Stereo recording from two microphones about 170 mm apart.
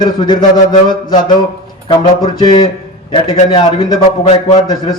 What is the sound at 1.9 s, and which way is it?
A man's voice, 30° left (ahead or behind).